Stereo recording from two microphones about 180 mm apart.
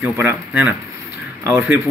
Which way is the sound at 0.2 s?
10° right (ahead or behind).